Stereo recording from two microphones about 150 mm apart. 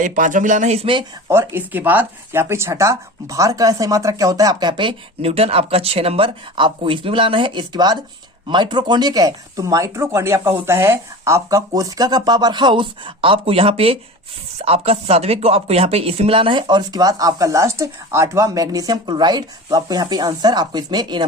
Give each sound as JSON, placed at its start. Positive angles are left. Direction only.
{"t": 0.0, "sound": "speech", "side_deg": -60}
{"t": 1.3, "sound": "speech", "side_deg": -15}